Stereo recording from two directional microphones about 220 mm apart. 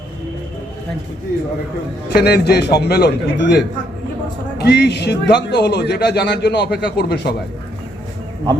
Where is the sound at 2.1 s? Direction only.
50° left (ahead or behind).